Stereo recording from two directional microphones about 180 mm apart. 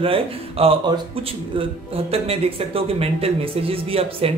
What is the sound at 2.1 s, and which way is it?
Speech, 30° right (ahead or behind).